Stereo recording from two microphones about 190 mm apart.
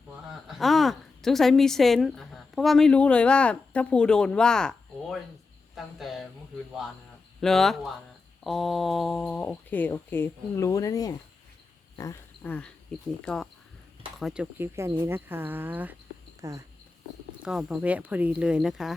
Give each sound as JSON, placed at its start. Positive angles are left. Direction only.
{"t": 0.3, "sound": "a woman's voice", "side_deg": 0}
{"t": 7.4, "sound": "speech", "side_deg": 0}
{"t": 14.6, "sound": "speech", "side_deg": -15}
{"t": 17.4, "sound": "speech", "side_deg": -5}